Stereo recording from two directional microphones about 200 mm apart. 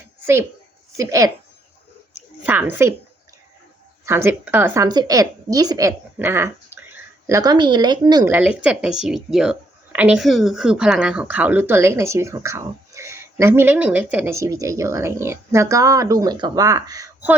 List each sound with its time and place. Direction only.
0.9 s a woman's voice: 15° right (ahead or behind)
2.4 s a woman's voice: 10° right (ahead or behind)
4.0 s a woman's voice: 10° right (ahead or behind)